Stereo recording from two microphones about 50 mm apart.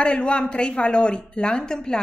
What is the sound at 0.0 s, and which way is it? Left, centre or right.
A woman's voice, left.